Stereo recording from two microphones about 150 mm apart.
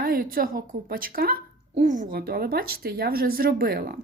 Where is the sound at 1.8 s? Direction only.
65° right (ahead or behind); by 3.9 s 90° right.